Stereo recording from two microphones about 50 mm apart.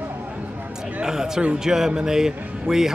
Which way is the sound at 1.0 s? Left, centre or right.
Centre.